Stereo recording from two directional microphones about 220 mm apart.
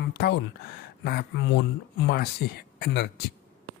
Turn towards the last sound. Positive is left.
turn(degrees=50)  # may be behind; listen again after turning